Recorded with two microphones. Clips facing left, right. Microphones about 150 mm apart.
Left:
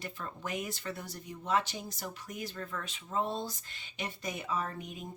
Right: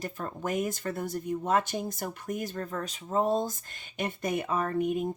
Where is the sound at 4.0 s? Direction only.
55° right (ahead or behind).